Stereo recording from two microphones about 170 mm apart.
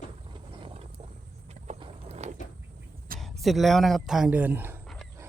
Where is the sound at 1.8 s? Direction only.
40° right (ahead or behind).